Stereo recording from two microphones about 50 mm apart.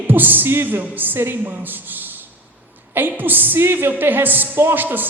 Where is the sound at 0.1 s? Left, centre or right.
Right.